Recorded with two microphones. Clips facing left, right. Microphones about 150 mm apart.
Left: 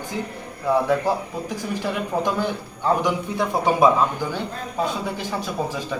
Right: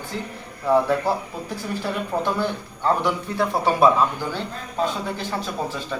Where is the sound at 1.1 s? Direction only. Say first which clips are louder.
Left 1 dB; 15° left (ahead or behind).